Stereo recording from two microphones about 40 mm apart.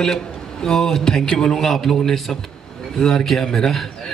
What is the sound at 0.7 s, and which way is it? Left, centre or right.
A man's voice, centre.